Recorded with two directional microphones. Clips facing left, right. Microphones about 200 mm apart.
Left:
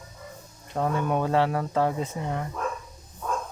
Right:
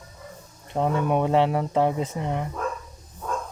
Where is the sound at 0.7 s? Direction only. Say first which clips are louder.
Right 3 dB; 20° right (ahead or behind).